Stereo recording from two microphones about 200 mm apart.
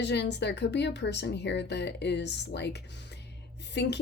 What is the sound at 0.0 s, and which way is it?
Speech, 60° left (ahead or behind).